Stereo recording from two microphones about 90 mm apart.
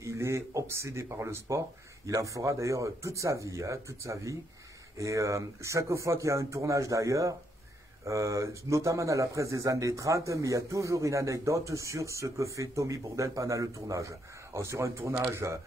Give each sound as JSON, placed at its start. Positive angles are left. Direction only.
{"t": 0.0, "sound": "speech", "side_deg": -35}